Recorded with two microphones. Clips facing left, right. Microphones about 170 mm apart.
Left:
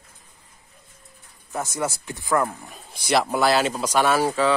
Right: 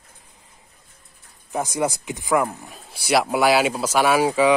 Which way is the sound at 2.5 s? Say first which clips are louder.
Right 2 dB; 5° right (ahead or behind).